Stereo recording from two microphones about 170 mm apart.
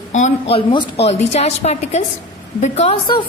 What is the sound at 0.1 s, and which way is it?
Speech, 45° left (ahead or behind).